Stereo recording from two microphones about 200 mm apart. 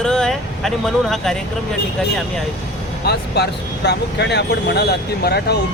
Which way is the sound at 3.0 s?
55° left (ahead or behind).